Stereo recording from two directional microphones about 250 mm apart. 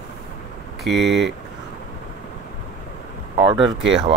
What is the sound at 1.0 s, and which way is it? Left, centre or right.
Speech, centre.